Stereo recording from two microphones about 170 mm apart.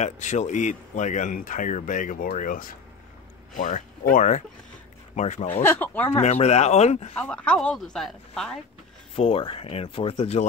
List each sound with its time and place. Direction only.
0.0 s speech: 45° left (ahead or behind)
5.6 s speech: 10° left (ahead or behind)
6.2 s speech: 40° left (ahead or behind)
7.2 s speech: 5° left (ahead or behind)
9.1 s speech: 35° left (ahead or behind)